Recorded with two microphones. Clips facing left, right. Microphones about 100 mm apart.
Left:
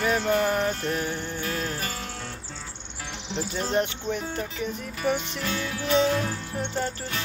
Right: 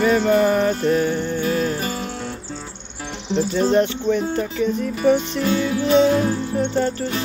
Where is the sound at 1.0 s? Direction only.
10° left (ahead or behind).